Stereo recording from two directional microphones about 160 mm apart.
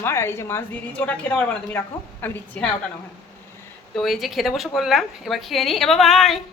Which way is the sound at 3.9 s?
Centre (ahead or behind).